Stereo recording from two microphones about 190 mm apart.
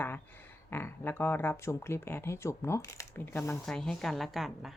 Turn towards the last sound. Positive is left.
turn(degrees=0)  # may be behind; listen again after turning